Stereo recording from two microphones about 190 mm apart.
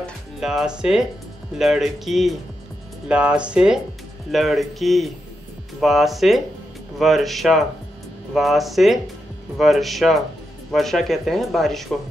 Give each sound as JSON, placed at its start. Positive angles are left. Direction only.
{"t": 0.0, "sound": "speech", "side_deg": 0}